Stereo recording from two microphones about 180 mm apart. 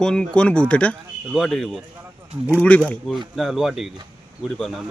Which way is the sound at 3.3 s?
Centre (ahead or behind).